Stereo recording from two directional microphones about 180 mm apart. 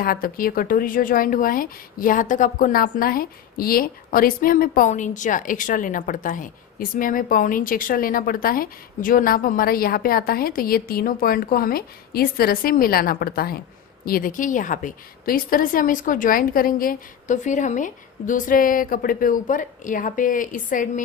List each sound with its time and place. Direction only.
0.0 s speech: 55° left (ahead or behind)